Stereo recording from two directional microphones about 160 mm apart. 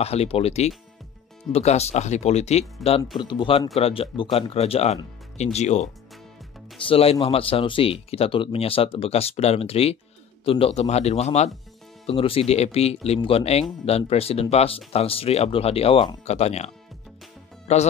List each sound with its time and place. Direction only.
0.0 s speech: 40° left (ahead or behind)
3.2 s speech: 30° left (ahead or behind)
6.9 s speech: 35° left (ahead or behind)